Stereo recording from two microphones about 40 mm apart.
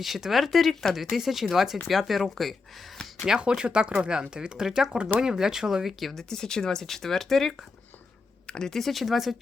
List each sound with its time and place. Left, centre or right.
0.0 s speech: centre
3.2 s speech: right
6.0 s speech: centre
6.2 s speech: centre
8.4 s speech: centre
8.7 s speech: centre